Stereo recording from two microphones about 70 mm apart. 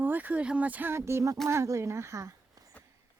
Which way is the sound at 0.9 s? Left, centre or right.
Right.